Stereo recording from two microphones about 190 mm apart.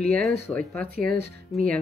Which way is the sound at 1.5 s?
5° left (ahead or behind).